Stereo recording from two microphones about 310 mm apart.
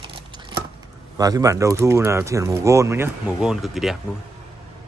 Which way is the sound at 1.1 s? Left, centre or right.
Centre.